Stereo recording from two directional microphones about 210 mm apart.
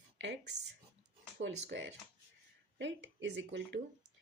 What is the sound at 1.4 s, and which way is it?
Speech, 60° right (ahead or behind).